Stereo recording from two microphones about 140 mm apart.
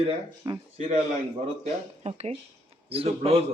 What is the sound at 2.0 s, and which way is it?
A man's voice, 50° right (ahead or behind).